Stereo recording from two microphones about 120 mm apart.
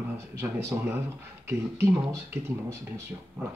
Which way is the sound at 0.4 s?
20° right (ahead or behind).